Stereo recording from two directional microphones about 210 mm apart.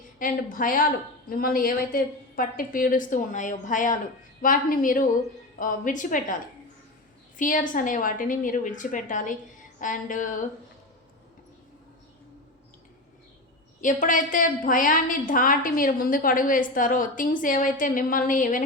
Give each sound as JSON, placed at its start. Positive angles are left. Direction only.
{"t": 0.2, "sound": "a woman's voice", "side_deg": 40}
{"t": 7.3, "sound": "a woman's voice", "side_deg": 40}
{"t": 13.8, "sound": "a woman's voice", "side_deg": 40}